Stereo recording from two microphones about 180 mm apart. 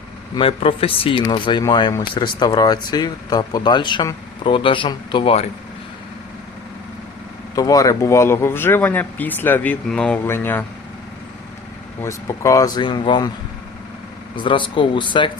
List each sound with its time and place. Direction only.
0.3 s speech: 30° left (ahead or behind)
7.5 s speech: 20° left (ahead or behind)
12.0 s speech: 15° left (ahead or behind)
14.3 s speech: 25° left (ahead or behind)